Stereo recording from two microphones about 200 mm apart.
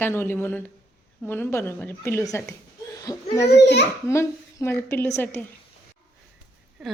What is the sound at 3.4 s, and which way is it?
Speech, 60° left (ahead or behind).